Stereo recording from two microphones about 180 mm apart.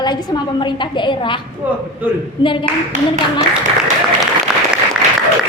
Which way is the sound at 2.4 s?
30° left (ahead or behind).